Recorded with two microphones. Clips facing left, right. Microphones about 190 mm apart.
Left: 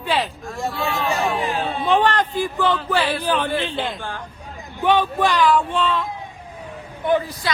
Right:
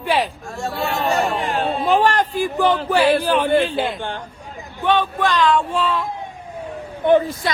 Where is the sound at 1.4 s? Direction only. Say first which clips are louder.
Right 1 dB; 55° right (ahead or behind).